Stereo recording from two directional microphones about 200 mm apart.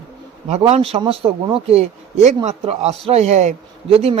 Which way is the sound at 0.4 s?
35° right (ahead or behind).